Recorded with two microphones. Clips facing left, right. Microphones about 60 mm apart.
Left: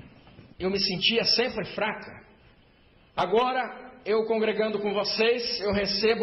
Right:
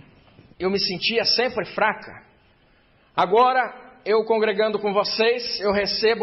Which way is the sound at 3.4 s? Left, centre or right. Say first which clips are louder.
Right 8 dB; right.